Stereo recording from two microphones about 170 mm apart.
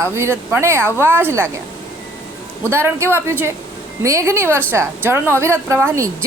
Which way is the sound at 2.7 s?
15° right (ahead or behind).